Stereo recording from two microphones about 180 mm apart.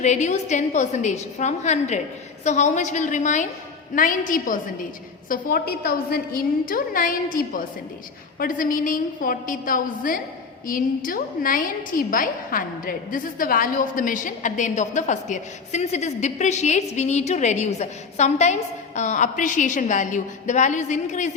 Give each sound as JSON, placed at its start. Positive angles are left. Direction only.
{"t": 0.0, "sound": "a woman's voice", "side_deg": 40}